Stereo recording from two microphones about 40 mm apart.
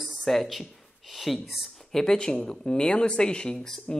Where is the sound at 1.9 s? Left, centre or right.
Centre.